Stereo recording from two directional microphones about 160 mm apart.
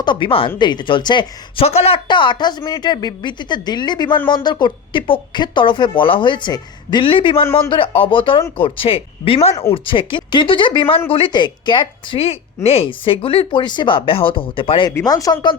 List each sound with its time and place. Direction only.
0.0 s a woman's voice: 30° left (ahead or behind)